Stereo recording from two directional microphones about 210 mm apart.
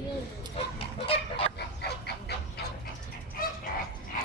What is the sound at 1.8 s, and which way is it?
Goose, 50° left (ahead or behind).